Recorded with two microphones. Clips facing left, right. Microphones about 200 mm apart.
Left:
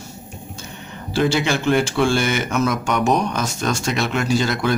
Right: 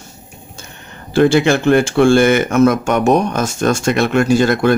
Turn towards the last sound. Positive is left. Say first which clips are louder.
# right 7 dB
turn(degrees=-55)  # may be behind; listen again after turning